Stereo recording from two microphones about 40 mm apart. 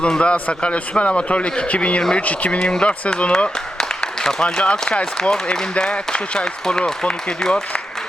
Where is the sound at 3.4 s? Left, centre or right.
Centre.